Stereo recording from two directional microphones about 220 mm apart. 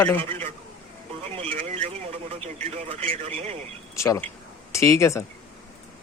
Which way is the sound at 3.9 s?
15° left (ahead or behind).